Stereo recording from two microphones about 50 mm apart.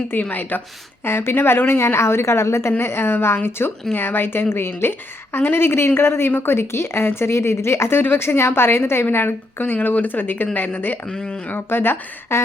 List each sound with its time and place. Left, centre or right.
0.1 s speech: left
1.0 s a woman's voice: left
11.1 s speech: centre
11.4 s a woman's voice: left